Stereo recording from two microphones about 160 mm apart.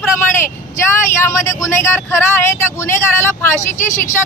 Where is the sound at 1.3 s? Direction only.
15° left (ahead or behind).